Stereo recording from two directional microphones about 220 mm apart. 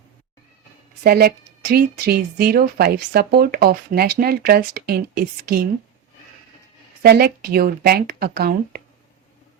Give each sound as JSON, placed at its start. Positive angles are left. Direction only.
{"t": 1.0, "sound": "a woman's voice", "side_deg": -45}
{"t": 7.0, "sound": "a woman's voice", "side_deg": -45}